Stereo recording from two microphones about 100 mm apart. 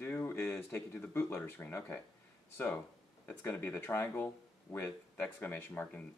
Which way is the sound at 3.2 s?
20° left (ahead or behind).